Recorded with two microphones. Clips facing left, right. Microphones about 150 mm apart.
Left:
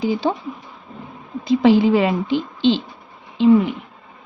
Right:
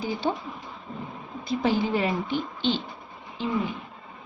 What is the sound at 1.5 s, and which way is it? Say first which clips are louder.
A woman's voice: left 11 dB; 90° left.